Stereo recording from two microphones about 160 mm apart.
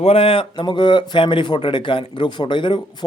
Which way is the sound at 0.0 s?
35° left (ahead or behind).